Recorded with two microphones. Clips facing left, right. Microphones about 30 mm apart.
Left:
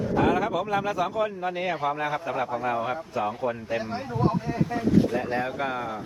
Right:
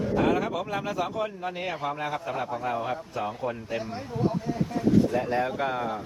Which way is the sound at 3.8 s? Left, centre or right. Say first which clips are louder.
Left 1 dB; left.